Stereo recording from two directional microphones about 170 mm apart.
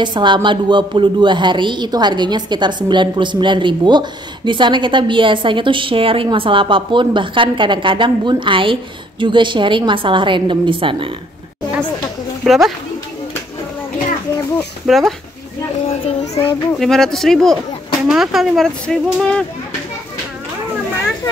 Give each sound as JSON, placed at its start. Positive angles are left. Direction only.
{"t": 0.0, "sound": "a woman's voice", "side_deg": -25}
{"t": 12.4, "sound": "speech", "side_deg": 0}
{"t": 14.6, "sound": "speech", "side_deg": 0}
{"t": 15.9, "sound": "a child's voice", "side_deg": 35}
{"t": 16.7, "sound": "speech", "side_deg": 0}